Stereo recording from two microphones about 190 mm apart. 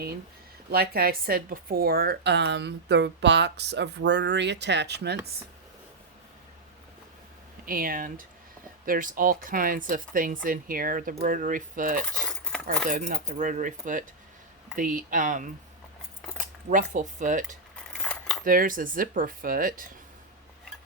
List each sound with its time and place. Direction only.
0.7 s a woman's voice: 55° right (ahead or behind)
7.6 s speech: 50° right (ahead or behind)
12.1 s keys jangling: 5° left (ahead or behind)
12.6 s speech: 40° right (ahead or behind)
16.6 s speech: 40° right (ahead or behind)
17.9 s cutlery: 5° left (ahead or behind)
18.4 s speech: 45° right (ahead or behind)